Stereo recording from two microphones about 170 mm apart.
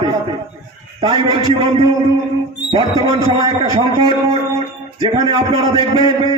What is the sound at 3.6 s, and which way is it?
A man's voice, 35° right (ahead or behind).